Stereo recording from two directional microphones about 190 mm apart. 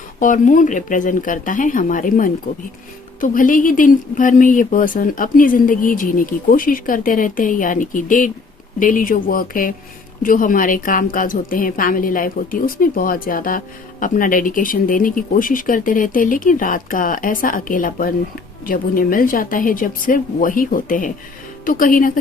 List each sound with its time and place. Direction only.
0.2 s speech: 45° left (ahead or behind)